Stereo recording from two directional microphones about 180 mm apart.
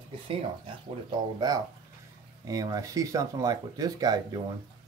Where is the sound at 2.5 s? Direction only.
20° right (ahead or behind).